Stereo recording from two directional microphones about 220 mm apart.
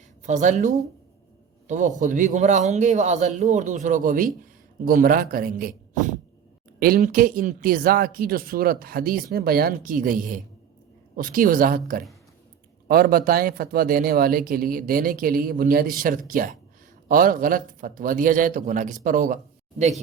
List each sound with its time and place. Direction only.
0.3 s speech: 35° right (ahead or behind)
1.6 s a man's voice: 35° right (ahead or behind)
12.9 s speech: 40° right (ahead or behind)